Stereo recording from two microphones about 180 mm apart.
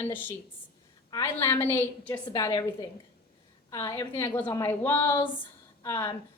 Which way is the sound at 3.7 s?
15° left (ahead or behind).